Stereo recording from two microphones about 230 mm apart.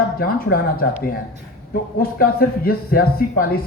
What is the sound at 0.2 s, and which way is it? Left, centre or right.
Speech, left.